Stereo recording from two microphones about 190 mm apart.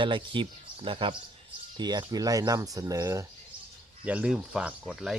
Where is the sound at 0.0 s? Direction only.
25° right (ahead or behind).